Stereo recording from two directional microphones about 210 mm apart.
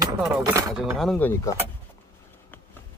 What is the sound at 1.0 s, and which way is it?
Speech, 5° left (ahead or behind).